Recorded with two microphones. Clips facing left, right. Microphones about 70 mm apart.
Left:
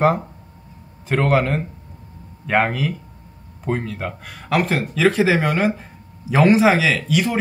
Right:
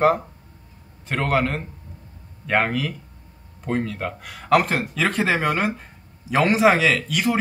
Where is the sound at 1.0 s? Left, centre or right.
Centre.